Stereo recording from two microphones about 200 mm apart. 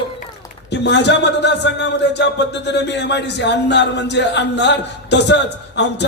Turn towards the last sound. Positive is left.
turn(degrees=60)  # may be behind; listen again after turning